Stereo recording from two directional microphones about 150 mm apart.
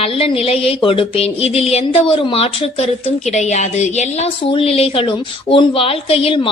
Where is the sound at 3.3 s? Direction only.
50° left (ahead or behind).